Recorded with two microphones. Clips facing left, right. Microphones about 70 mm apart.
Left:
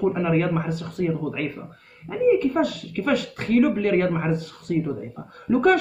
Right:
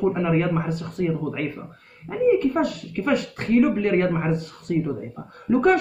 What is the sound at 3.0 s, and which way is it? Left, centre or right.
A woman's voice, right.